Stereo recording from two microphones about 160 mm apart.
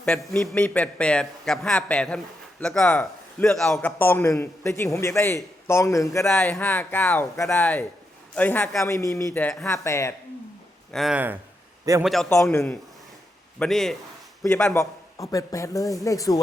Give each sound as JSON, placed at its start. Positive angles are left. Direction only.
{"t": 0.0, "sound": "a man's voice", "side_deg": 5}
{"t": 6.2, "sound": "a man's voice", "side_deg": 5}
{"t": 9.6, "sound": "a man's voice", "side_deg": 20}
{"t": 10.9, "sound": "a man's voice", "side_deg": 0}
{"t": 13.6, "sound": "a man's voice", "side_deg": 0}
{"t": 14.7, "sound": "speech", "side_deg": 20}